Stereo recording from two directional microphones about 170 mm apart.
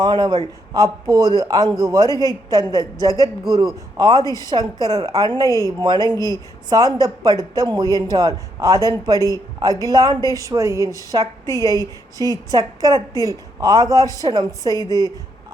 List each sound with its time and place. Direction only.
0.0 s speech: 25° right (ahead or behind)
4.2 s a woman's voice: 20° left (ahead or behind)
4.4 s speech: 25° right (ahead or behind)
5.5 s a woman's voice: 20° left (ahead or behind)
5.8 s speech: 25° right (ahead or behind)
11.4 s a woman's voice: 20° left (ahead or behind)
12.5 s speech: 20° right (ahead or behind)